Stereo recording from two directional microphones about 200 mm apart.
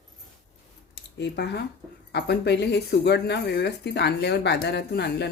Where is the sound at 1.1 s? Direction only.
55° left (ahead or behind).